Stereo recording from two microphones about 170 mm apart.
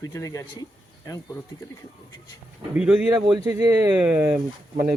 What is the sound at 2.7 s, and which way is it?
Speech, 5° right (ahead or behind).